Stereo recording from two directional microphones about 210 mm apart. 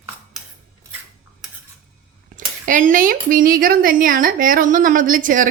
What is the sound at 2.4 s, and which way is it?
A woman's voice, 40° right (ahead or behind).